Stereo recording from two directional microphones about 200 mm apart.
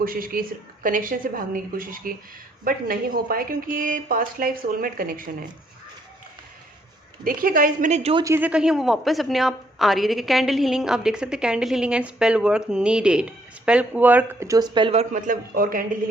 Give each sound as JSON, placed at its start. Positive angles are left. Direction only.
{"t": 0.0, "sound": "a woman's voice", "side_deg": -45}
{"t": 7.3, "sound": "a woman's voice", "side_deg": -45}
{"t": 8.2, "sound": "speech", "side_deg": -10}
{"t": 15.1, "sound": "a woman's voice", "side_deg": -40}